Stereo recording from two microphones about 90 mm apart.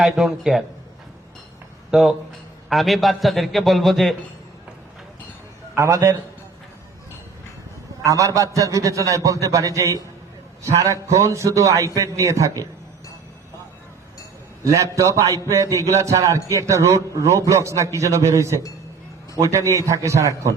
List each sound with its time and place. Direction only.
0.0 s a man's voice: 5° right (ahead or behind)
1.9 s a man's voice: 5° right (ahead or behind)
5.7 s a man's voice: 35° right (ahead or behind)
8.0 s a man's voice: 35° right (ahead or behind)
14.6 s a man's voice: 35° right (ahead or behind)